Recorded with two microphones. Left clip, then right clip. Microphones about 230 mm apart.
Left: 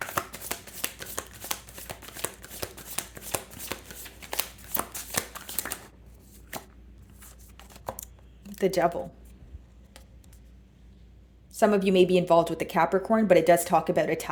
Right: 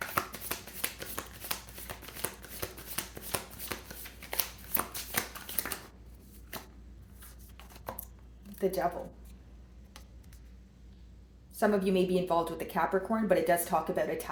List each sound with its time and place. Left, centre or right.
0.1 s shuffling cards: left
8.5 s speech: left
11.5 s a woman's voice: left